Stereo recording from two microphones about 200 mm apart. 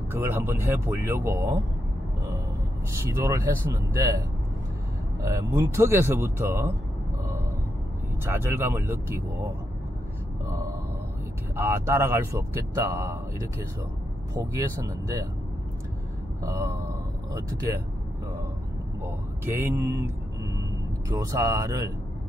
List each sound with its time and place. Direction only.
0.1 s speech: 10° right (ahead or behind)
3.1 s speech: 15° right (ahead or behind)
5.2 s speech: 15° right (ahead or behind)
8.4 s speech: 10° right (ahead or behind)
11.5 s speech: 10° right (ahead or behind)
16.4 s speech: 15° right (ahead or behind)
19.4 s speech: 10° right (ahead or behind)
21.2 s speech: 15° right (ahead or behind)